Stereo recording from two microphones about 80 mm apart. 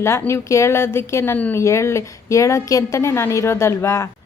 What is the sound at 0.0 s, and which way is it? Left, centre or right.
A woman's voice, left.